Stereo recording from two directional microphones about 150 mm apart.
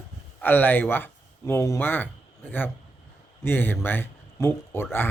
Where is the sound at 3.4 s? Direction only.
15° left (ahead or behind).